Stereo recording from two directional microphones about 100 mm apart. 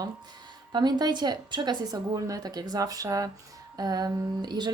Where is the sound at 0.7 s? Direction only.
45° right (ahead or behind).